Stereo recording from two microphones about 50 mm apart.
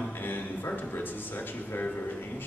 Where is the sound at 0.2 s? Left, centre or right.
Left.